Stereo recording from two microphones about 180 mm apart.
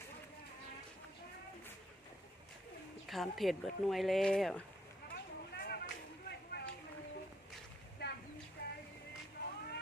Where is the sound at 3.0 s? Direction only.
Centre (ahead or behind).